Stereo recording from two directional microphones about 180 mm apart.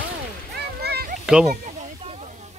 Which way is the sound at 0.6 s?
65° right (ahead or behind).